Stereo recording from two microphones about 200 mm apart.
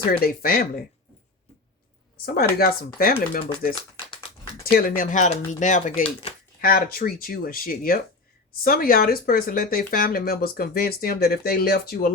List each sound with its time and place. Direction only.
0.1 s speech: 50° left (ahead or behind)
2.2 s speech: 50° left (ahead or behind)
4.6 s speech: 45° left (ahead or behind); by 6.3 s 30° left (ahead or behind)
6.6 s speech: 50° left (ahead or behind)